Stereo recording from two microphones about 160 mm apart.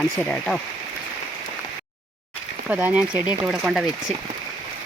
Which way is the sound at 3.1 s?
25° left (ahead or behind).